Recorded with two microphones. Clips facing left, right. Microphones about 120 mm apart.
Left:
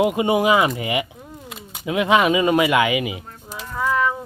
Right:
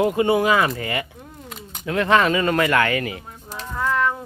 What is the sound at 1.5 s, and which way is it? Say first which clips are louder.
Speech: left 1 dB; 5° left (ahead or behind).